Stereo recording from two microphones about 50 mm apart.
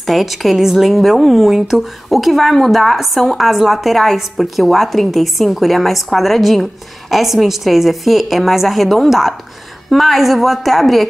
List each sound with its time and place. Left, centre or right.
0.0 s speech: centre